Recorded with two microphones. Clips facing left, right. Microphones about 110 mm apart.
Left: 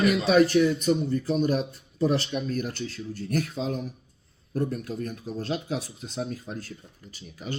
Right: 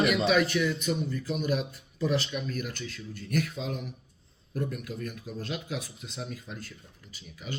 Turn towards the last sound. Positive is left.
turn(degrees=40)  # may be behind; listen again after turning